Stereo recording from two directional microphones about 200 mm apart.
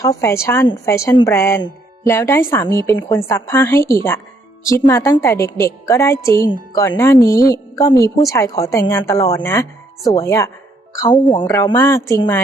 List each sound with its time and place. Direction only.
0.0 s speech: 15° left (ahead or behind)